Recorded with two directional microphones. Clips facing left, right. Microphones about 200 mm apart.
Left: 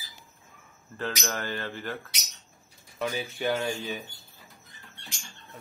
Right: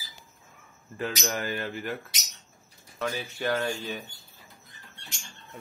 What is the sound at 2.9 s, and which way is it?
Speech, 5° left (ahead or behind).